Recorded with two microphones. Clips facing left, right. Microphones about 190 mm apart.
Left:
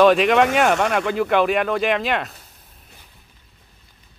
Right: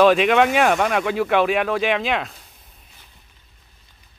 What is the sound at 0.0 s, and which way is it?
A man's voice, centre (ahead or behind).